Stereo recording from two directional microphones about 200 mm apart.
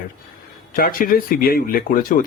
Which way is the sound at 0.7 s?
45° left (ahead or behind).